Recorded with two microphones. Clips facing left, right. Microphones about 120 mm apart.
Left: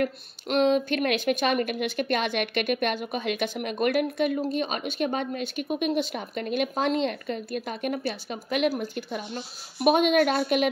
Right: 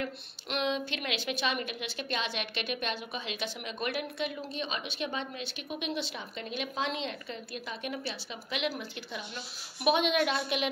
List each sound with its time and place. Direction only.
0.0 s a woman's voice: 45° left (ahead or behind)